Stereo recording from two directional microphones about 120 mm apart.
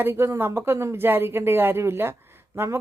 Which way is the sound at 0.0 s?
20° right (ahead or behind).